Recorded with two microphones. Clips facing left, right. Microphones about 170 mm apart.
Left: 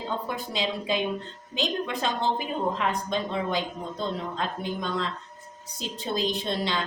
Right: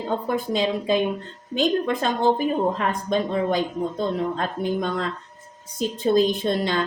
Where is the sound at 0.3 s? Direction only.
50° right (ahead or behind).